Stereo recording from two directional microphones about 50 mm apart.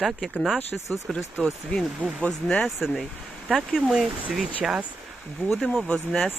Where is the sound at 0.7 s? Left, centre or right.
Centre.